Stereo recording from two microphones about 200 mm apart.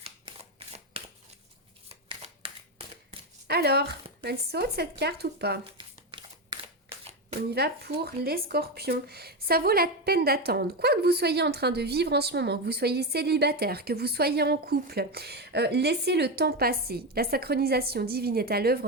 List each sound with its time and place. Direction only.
0.0 s shuffling cards: 30° right (ahead or behind)
3.4 s speech: 55° right (ahead or behind)
5.7 s a sound: 25° right (ahead or behind)
7.5 s speech: 55° right (ahead or behind)